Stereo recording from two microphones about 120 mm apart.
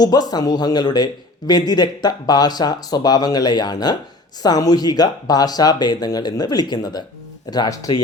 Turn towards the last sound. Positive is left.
turn(degrees=30)  # may be behind; listen again after turning